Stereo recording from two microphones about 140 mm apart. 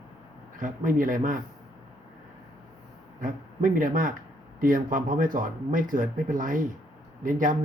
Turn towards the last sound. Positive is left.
turn(degrees=-70)  # may be behind; listen again after turning